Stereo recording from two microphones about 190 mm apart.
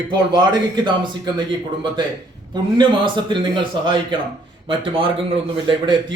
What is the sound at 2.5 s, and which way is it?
Speech, 25° right (ahead or behind).